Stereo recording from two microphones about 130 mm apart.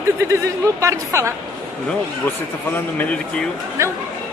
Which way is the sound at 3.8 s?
20° right (ahead or behind).